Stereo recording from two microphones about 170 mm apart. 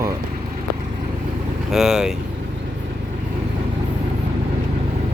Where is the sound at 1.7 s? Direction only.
5° right (ahead or behind).